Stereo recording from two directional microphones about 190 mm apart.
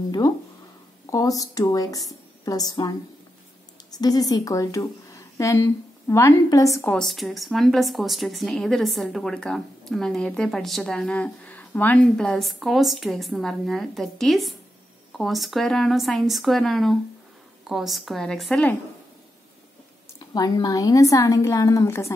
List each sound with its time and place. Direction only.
1.1 s a woman's voice: 20° left (ahead or behind)
7.0 s speech: centre (ahead or behind)
20.2 s a woman's voice: 20° left (ahead or behind)